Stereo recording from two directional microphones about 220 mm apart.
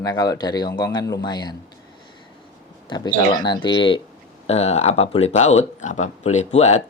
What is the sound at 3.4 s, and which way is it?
Speech, 20° left (ahead or behind).